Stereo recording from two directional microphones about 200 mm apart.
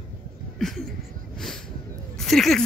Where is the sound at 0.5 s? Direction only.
Centre (ahead or behind).